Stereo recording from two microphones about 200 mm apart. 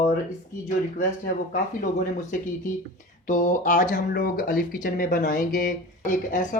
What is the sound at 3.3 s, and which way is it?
Speech, 40° left (ahead or behind).